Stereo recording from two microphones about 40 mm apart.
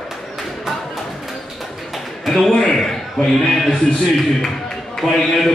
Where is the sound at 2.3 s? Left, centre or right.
Centre.